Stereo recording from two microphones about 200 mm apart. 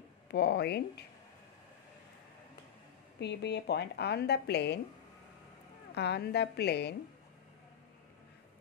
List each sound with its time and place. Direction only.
0.3 s speech: 55° left (ahead or behind)
3.2 s speech: 55° left (ahead or behind)
5.9 s speech: 55° left (ahead or behind)